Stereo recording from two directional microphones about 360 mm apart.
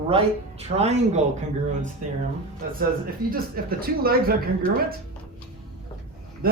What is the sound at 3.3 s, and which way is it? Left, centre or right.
Speech, right.